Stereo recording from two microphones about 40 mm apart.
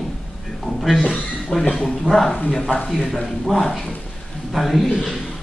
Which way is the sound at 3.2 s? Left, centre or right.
Centre.